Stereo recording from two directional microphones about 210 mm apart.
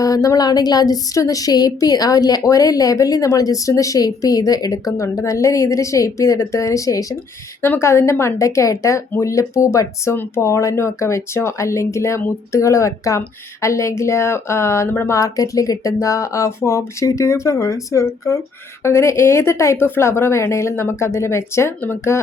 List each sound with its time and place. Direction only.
0.0 s speech: 15° left (ahead or behind)